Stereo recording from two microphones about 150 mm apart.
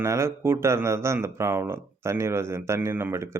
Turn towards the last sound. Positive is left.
turn(degrees=-20)  # may be behind; listen again after turning